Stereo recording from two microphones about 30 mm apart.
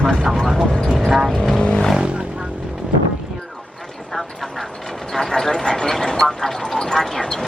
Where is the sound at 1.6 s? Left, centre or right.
Left.